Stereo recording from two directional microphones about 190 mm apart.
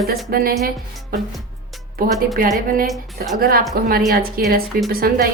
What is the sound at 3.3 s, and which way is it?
A woman's voice, 55° right (ahead or behind).